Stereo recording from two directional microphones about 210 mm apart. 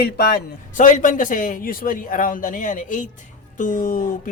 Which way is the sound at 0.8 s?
35° left (ahead or behind).